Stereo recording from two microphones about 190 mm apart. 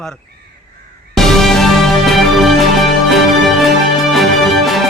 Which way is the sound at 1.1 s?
Centre (ahead or behind).